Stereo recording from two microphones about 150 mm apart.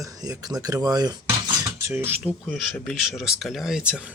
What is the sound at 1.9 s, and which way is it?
Speech, 10° right (ahead or behind).